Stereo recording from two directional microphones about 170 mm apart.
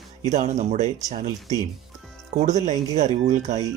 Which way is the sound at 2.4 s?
45° right (ahead or behind).